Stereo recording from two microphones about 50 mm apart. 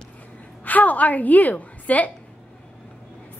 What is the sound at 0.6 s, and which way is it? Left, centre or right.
A woman's voice, left.